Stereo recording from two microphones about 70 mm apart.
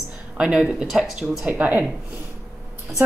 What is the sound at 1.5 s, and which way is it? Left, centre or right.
Speech, right.